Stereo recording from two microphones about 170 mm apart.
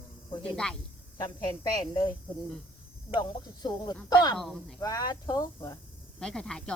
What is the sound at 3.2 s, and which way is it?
Speech, 25° left (ahead or behind).